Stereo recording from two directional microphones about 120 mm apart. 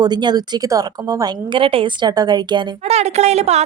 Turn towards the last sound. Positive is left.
turn(degrees=-65)  # may be behind; listen again after turning